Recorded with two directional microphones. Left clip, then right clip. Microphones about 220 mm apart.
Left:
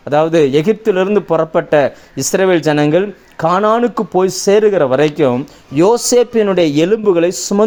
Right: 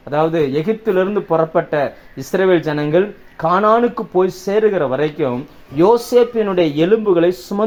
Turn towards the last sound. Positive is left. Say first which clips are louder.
# left 2 dB
turn(degrees=45)  # may be behind; listen again after turning